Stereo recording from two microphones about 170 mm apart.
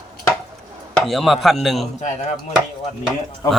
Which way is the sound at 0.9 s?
Centre (ahead or behind).